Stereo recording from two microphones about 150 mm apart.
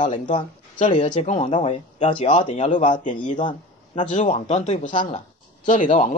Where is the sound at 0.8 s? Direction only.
55° left (ahead or behind); by 2.6 s 35° left (ahead or behind).